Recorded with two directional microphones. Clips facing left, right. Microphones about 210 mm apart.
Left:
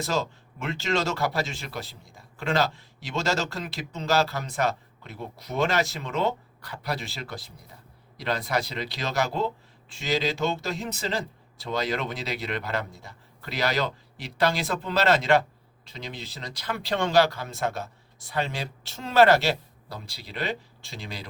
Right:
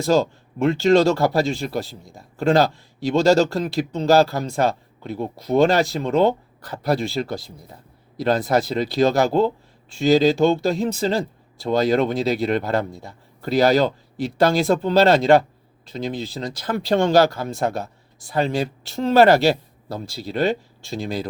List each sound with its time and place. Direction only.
0.6 s speech: 40° right (ahead or behind)